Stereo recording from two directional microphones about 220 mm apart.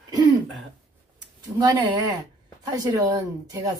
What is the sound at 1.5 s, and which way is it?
A woman's voice, 20° right (ahead or behind).